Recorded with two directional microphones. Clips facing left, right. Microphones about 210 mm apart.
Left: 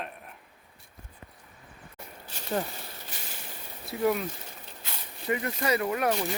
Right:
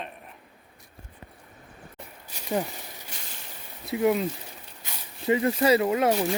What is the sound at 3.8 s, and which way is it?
Speech, 20° right (ahead or behind).